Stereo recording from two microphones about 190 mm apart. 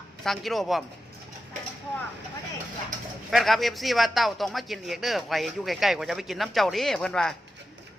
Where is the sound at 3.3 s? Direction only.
Centre (ahead or behind).